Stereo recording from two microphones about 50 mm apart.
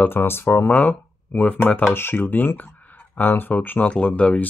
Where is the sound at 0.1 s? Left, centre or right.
Left.